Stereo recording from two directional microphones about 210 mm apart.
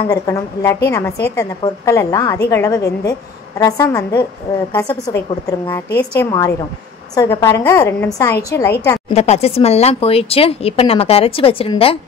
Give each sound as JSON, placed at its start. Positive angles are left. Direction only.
{"t": 0.0, "sound": "a woman's voice", "side_deg": 15}
{"t": 9.1, "sound": "speech", "side_deg": 30}